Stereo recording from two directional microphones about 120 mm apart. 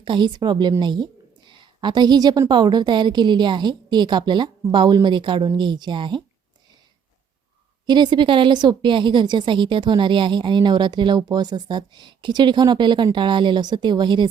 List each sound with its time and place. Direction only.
0.0 s a woman's voice: 40° right (ahead or behind)
0.8 s a sound: 40° right (ahead or behind)
2.5 s a woman's voice: 40° right (ahead or behind)
7.9 s a woman's voice: 40° right (ahead or behind)